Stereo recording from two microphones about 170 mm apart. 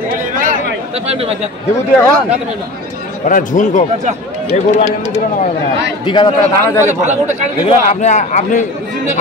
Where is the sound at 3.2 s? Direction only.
50° left (ahead or behind).